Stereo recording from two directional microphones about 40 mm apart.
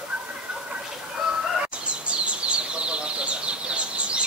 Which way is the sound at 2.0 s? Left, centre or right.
Right.